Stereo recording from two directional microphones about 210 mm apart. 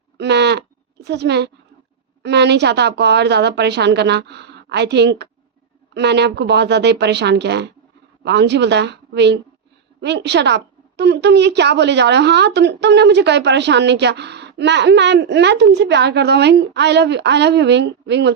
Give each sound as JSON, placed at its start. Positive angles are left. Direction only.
{"t": 0.2, "sound": "a child's voice", "side_deg": -55}